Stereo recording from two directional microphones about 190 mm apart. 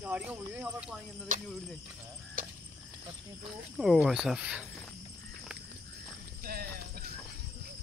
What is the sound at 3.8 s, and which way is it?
Speech, centre (ahead or behind).